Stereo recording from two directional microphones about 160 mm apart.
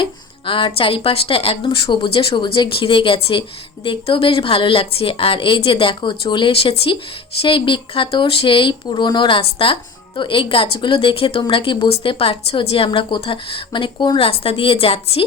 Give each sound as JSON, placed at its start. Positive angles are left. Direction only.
{"t": 0.0, "sound": "speech", "side_deg": 30}